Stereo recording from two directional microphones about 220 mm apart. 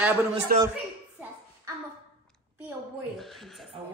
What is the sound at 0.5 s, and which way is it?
Speech, 40° right (ahead or behind).